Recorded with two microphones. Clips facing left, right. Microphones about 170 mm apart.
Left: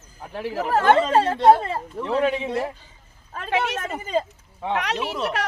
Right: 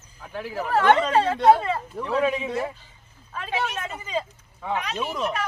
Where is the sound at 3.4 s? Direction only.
80° left.